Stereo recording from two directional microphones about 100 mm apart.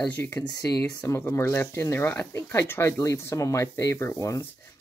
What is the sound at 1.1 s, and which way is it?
Speech, 30° left (ahead or behind).